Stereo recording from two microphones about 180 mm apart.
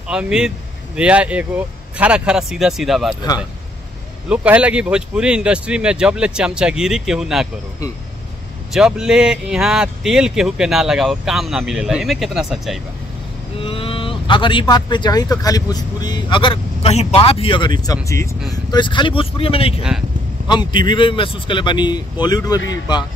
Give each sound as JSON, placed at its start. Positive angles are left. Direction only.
{"t": 0.1, "sound": "speech", "side_deg": -5}
{"t": 4.3, "sound": "speech", "side_deg": -5}
{"t": 8.7, "sound": "speech", "side_deg": -5}
{"t": 13.6, "sound": "speech", "side_deg": 30}
{"t": 18.7, "sound": "speech", "side_deg": 25}